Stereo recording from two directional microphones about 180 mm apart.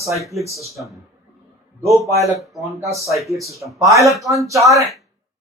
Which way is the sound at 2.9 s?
15° right (ahead or behind).